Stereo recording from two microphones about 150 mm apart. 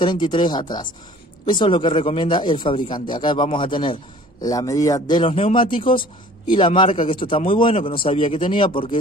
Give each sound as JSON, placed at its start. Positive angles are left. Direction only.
{"t": 0.0, "sound": "a man's voice", "side_deg": 30}